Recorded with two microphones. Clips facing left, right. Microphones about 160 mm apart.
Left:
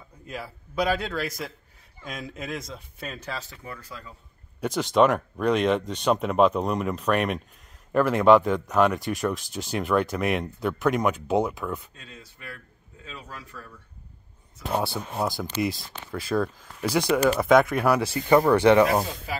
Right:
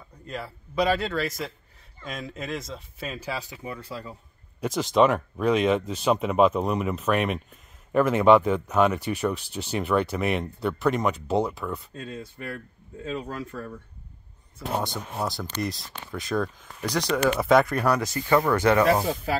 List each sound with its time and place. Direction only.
0.3 s speech: centre (ahead or behind); by 4.1 s 30° right (ahead or behind)
4.6 s speech: centre (ahead or behind)
12.4 s speech: 25° right (ahead or behind)
13.0 s speech: 50° right (ahead or behind)
14.8 s speech: 5° left (ahead or behind)
18.5 s speech: 15° left (ahead or behind)